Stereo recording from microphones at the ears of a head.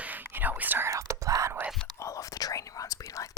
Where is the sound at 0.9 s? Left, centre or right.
Right.